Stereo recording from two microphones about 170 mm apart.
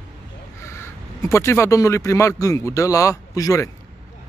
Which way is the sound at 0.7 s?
15° left (ahead or behind).